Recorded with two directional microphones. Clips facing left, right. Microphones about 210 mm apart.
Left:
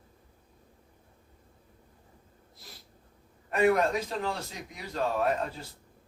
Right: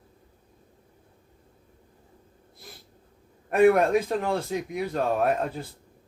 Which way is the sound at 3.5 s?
55° right (ahead or behind).